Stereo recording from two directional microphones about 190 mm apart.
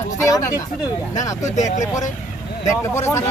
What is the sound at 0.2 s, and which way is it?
Speech, 15° left (ahead or behind).